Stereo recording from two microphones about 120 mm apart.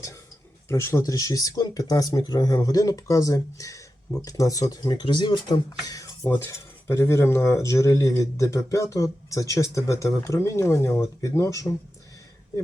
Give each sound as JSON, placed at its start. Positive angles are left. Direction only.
{"t": 0.7, "sound": "speech", "side_deg": 20}